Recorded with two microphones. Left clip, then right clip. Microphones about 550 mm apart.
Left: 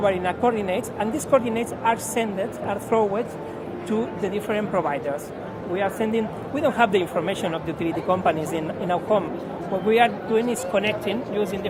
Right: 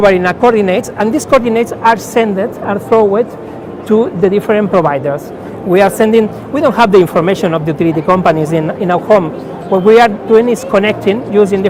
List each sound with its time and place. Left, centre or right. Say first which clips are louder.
0.0 s speech: right 13 dB; right
3.9 s speech: right 16 dB; right